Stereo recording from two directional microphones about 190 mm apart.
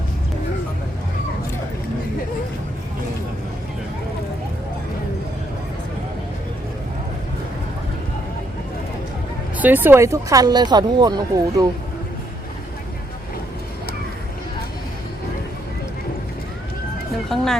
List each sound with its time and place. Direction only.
9.6 s speech: 10° right (ahead or behind)
17.2 s speech: centre (ahead or behind)